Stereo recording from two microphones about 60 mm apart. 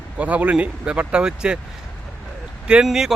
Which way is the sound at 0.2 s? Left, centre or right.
Right.